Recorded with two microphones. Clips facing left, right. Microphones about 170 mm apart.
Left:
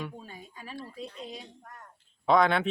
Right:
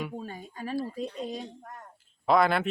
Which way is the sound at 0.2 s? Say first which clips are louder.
Right 7 dB; 45° right (ahead or behind).